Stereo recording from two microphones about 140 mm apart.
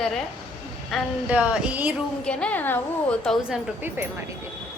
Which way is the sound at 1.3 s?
10° right (ahead or behind).